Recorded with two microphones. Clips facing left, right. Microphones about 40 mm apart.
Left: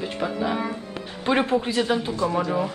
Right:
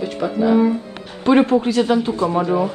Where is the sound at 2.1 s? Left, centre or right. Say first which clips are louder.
Right 5 dB; right.